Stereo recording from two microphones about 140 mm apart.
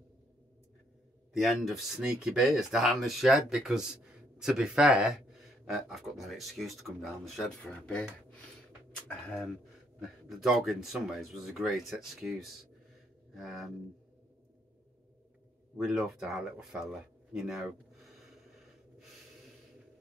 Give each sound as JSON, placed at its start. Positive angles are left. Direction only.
{"t": 1.3, "sound": "speech", "side_deg": 0}
{"t": 13.3, "sound": "a sound", "side_deg": 0}
{"t": 15.7, "sound": "speech", "side_deg": 0}